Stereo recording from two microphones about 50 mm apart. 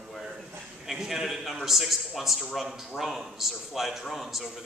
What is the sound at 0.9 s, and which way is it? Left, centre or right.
A man's voice, centre.